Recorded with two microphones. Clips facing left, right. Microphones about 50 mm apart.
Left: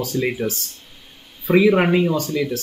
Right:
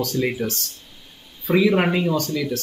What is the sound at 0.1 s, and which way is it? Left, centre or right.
Speech, centre.